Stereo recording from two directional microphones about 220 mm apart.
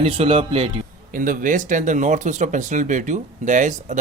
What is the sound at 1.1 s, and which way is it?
Speech, 40° right (ahead or behind).